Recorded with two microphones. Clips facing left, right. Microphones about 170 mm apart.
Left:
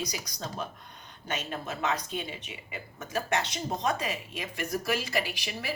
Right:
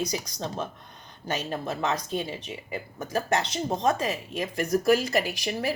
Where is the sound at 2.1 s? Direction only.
35° right (ahead or behind).